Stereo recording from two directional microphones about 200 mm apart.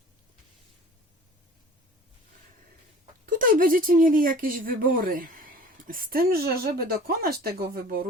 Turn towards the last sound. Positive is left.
turn(degrees=-50)  # may be behind; listen again after turning